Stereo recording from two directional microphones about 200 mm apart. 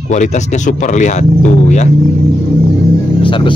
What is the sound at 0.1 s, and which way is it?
Speech, 35° left (ahead or behind).